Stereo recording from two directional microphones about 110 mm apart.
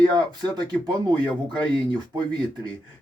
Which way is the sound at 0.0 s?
40° right (ahead or behind).